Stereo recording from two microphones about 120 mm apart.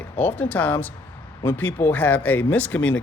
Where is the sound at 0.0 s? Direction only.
15° left (ahead or behind).